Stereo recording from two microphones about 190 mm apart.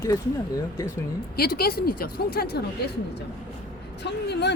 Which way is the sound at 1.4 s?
55° left (ahead or behind).